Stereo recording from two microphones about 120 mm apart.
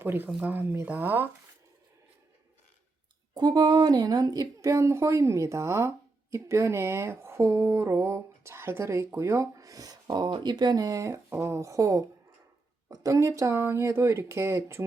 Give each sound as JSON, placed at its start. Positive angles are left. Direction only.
{"t": 0.0, "sound": "speech", "side_deg": -20}
{"t": 0.3, "sound": "speech", "side_deg": -5}
{"t": 0.5, "sound": "speech", "side_deg": -20}
{"t": 3.3, "sound": "speech", "side_deg": -35}